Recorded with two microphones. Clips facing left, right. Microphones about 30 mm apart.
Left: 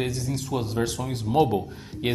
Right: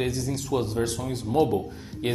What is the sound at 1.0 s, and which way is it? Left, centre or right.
Speech, centre.